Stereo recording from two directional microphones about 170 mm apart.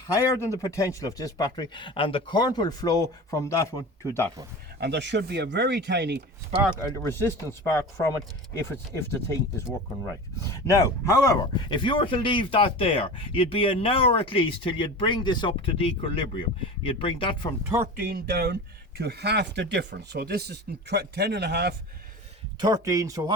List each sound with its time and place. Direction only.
0.1 s speech: 20° left (ahead or behind)
4.8 s speech: 85° right
6.7 s speech: 15° left (ahead or behind)
10.4 s speech: 15° left (ahead or behind)
17.9 s speech: 65° right (ahead or behind)
22.6 s speech: 20° right (ahead or behind)